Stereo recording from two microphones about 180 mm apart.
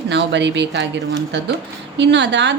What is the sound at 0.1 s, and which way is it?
A woman's voice, 75° right (ahead or behind).